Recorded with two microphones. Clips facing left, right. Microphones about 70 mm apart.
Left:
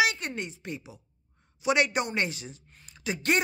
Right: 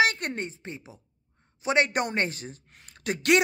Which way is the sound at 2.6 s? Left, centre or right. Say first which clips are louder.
Right 2 dB; right.